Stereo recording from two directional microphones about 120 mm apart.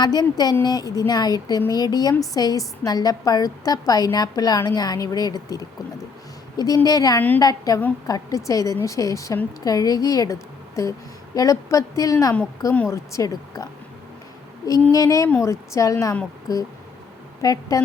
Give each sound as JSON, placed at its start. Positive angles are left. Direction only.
{"t": 0.0, "sound": "a woman's voice", "side_deg": 35}
{"t": 14.9, "sound": "a woman's voice", "side_deg": 30}